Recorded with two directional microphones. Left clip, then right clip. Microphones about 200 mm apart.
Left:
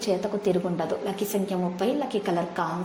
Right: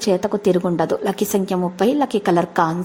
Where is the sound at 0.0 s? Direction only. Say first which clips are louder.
Right 7 dB; 45° right (ahead or behind).